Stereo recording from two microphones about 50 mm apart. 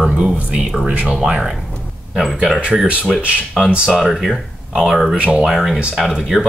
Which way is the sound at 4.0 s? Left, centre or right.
Centre.